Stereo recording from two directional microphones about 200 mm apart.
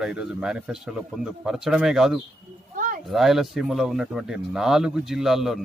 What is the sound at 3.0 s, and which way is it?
Speech, centre (ahead or behind).